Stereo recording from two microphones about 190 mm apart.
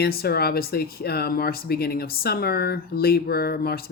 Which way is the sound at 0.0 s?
55° left (ahead or behind).